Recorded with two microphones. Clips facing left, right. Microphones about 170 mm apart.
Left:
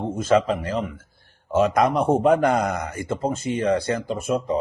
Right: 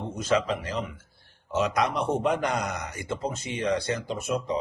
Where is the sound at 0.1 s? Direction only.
50° left (ahead or behind).